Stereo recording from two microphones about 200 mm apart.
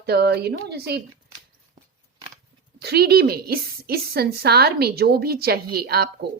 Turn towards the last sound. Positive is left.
turn(degrees=-50)  # may be behind; listen again after turning